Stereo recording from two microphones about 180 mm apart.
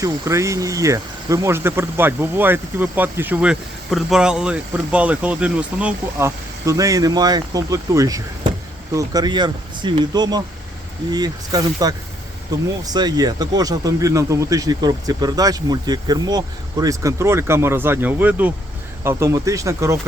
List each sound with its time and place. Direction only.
0.0 s speech: 15° right (ahead or behind)